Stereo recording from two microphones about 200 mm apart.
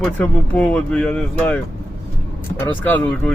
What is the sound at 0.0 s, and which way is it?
A man's voice, 5° left (ahead or behind).